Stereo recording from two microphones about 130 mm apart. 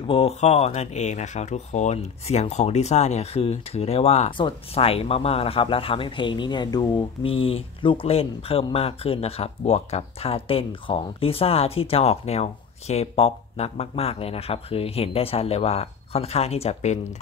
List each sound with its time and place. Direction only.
0.0 s speech: 45° left (ahead or behind)
4.3 s speech: 40° left (ahead or behind); by 17.0 s 60° left (ahead or behind)